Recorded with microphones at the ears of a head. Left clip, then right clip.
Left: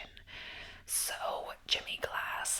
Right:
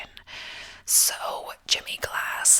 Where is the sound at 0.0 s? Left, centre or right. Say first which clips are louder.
Right 8 dB; right.